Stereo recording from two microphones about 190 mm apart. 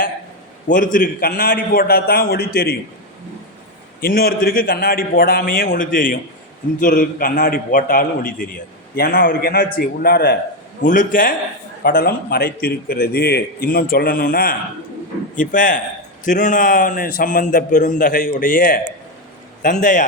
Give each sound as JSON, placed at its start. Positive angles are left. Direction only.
{"t": 0.7, "sound": "a man's voice", "side_deg": 45}
{"t": 4.0, "sound": "a man's voice", "side_deg": 50}